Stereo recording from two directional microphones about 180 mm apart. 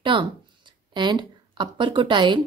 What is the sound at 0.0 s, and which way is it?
A woman's voice, 25° right (ahead or behind).